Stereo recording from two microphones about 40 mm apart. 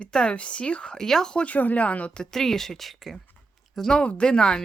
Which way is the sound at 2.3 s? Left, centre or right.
Centre.